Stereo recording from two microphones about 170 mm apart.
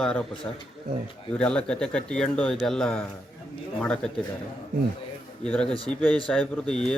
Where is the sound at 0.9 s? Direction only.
55° right (ahead or behind).